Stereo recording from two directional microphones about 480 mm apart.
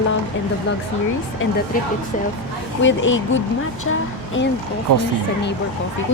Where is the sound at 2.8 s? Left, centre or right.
Left.